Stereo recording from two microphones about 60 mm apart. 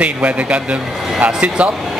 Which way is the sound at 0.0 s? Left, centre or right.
Right.